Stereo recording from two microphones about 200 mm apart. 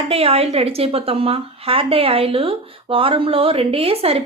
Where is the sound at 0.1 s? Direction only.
30° right (ahead or behind).